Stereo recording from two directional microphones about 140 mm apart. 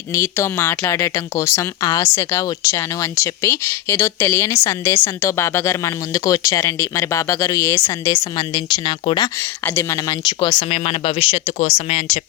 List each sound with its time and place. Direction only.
0.1 s speech: 20° left (ahead or behind)
8.2 s speech: 35° left (ahead or behind)
9.4 s speech: 15° left (ahead or behind)
10.7 s speech: 45° left (ahead or behind)